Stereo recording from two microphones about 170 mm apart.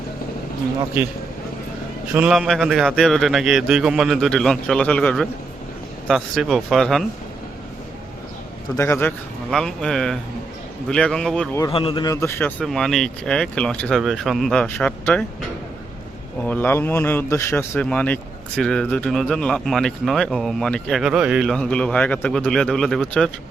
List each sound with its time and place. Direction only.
2.1 s a man's voice: 5° right (ahead or behind)
8.7 s a man's voice: 15° left (ahead or behind)
9.5 s a man's voice: 5° left (ahead or behind)
11.7 s a man's voice: 30° left (ahead or behind)
12.1 s a man's voice: 15° left (ahead or behind)
16.5 s a man's voice: 10° left (ahead or behind)